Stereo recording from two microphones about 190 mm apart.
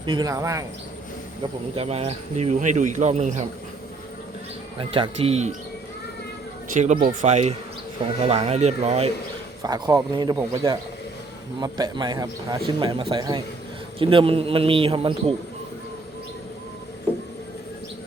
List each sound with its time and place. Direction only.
0.0 s a man's voice: 25° right (ahead or behind)
1.7 s speech: 35° right (ahead or behind)
4.8 s a man's voice: 25° right (ahead or behind)
6.7 s speech: 45° right (ahead or behind)
9.6 s a man's voice: 20° right (ahead or behind)